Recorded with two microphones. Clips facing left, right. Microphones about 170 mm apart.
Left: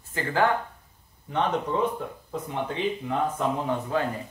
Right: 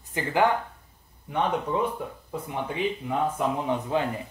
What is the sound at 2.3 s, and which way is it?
Speech, 10° right (ahead or behind).